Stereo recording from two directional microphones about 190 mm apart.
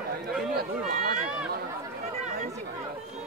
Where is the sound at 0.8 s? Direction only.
40° right (ahead or behind).